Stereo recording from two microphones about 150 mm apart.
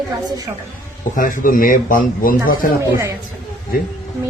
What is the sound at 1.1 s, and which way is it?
Speech, 65° left (ahead or behind).